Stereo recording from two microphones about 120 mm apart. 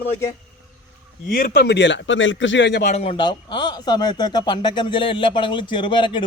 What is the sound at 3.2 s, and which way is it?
Speech, 40° left (ahead or behind).